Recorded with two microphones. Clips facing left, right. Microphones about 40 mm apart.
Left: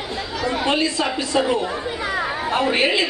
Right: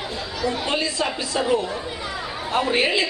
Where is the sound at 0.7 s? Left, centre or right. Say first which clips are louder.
Left 3 dB; left.